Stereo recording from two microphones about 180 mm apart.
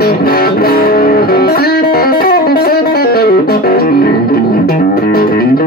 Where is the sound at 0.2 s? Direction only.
55° left (ahead or behind).